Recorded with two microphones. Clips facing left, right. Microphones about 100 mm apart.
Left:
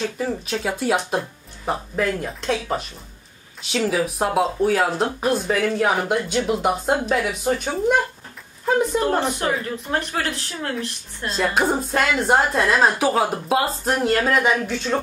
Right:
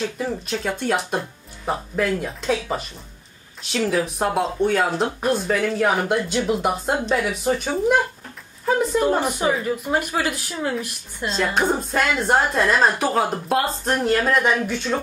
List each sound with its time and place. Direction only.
0.0 s speech: centre (ahead or behind)
11.2 s speech: 5° left (ahead or behind)